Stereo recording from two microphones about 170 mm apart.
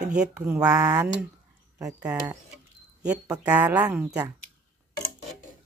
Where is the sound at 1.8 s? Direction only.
5° right (ahead or behind).